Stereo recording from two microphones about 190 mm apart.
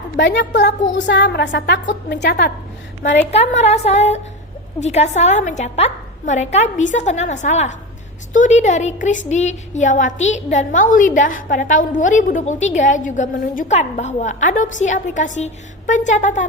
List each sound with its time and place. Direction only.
0.2 s a woman's voice: 70° left (ahead or behind)
3.0 s a woman's voice: 40° left (ahead or behind)